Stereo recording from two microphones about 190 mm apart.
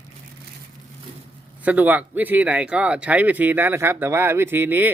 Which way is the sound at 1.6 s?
10° right (ahead or behind).